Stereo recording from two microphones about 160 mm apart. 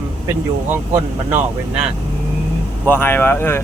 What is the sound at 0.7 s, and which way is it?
Speech, 10° right (ahead or behind).